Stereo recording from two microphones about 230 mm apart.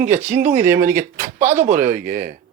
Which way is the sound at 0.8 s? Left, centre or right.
Centre.